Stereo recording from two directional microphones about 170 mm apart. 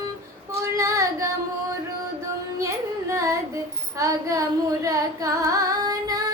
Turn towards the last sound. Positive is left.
turn(degrees=-20)  # may be behind; listen again after turning